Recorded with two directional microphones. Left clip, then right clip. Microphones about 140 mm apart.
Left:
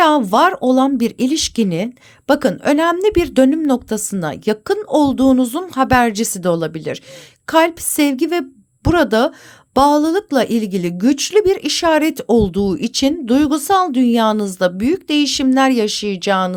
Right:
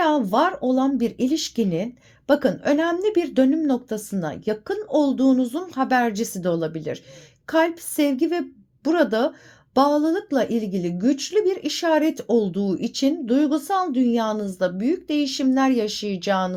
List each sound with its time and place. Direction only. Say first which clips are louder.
0.0 s a woman's voice: left 7 dB; 40° left (ahead or behind)